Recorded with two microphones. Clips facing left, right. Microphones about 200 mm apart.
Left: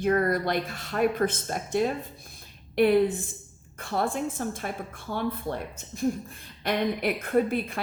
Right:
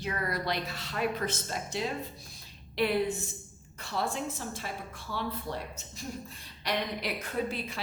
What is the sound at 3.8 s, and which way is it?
A woman's voice, 50° left (ahead or behind).